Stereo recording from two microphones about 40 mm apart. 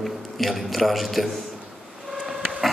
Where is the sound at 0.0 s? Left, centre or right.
Centre.